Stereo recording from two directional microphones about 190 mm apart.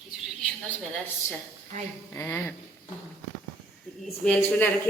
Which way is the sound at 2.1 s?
15° left (ahead or behind).